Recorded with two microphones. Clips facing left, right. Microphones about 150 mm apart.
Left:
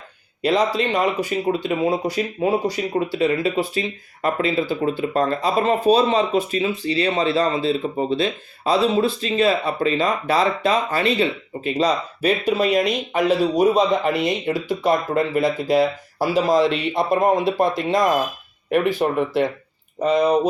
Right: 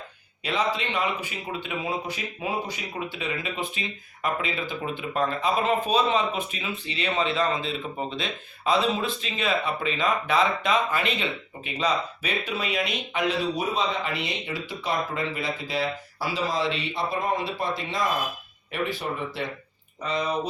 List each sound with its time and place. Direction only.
0.4 s speech: 40° left (ahead or behind)
18.9 s speech: 50° left (ahead or behind)
20.0 s speech: 45° left (ahead or behind)